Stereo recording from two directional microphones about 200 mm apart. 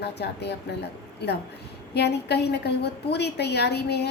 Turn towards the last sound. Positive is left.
turn(degrees=55)  # may be behind; listen again after turning